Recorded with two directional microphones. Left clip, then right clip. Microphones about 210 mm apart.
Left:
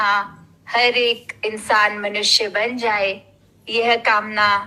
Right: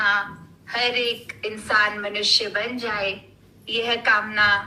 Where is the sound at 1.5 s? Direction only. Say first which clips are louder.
Left 4 dB; 35° left (ahead or behind).